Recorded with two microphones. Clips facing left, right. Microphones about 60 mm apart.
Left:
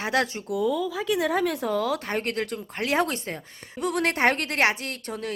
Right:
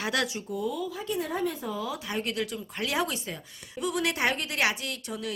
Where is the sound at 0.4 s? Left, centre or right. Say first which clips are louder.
Left 6 dB; left.